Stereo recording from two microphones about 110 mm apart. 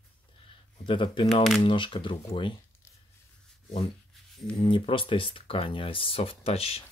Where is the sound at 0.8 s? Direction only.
50° left (ahead or behind).